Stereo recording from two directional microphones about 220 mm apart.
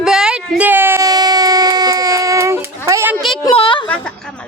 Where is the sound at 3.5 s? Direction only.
25° left (ahead or behind).